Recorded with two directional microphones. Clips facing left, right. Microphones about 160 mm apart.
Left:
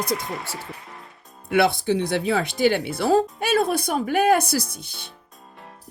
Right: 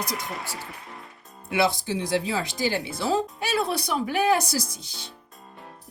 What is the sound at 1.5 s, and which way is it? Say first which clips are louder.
Speech: left 5 dB; 60° left (ahead or behind).